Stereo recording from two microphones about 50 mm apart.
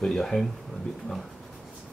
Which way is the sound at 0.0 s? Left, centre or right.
Centre.